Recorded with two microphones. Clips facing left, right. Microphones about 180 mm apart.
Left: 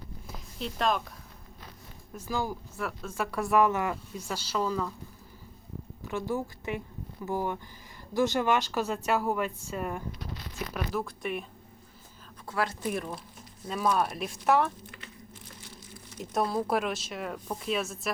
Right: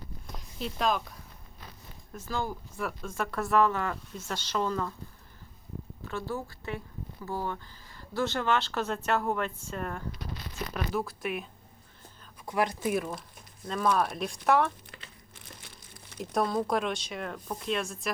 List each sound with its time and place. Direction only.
0.3 s a sound: centre (ahead or behind)
2.1 s speech: 10° left (ahead or behind)
6.1 s speech: 15° left (ahead or behind); by 11.4 s centre (ahead or behind)
12.5 s speech: 15° right (ahead or behind)
12.8 s speech: 5° right (ahead or behind)
16.3 s speech: centre (ahead or behind)